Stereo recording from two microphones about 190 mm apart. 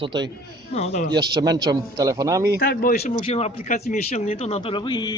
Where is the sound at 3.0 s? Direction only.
35° left (ahead or behind).